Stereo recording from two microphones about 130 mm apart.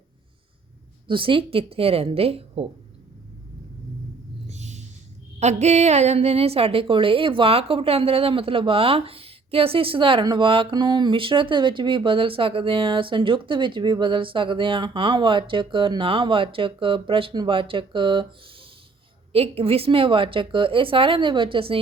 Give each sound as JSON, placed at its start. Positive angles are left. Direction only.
{"t": 1.0, "sound": "speech", "side_deg": -40}
{"t": 4.4, "sound": "a sound", "side_deg": -60}
{"t": 5.4, "sound": "a woman's voice", "side_deg": -60}
{"t": 19.3, "sound": "a woman's voice", "side_deg": -50}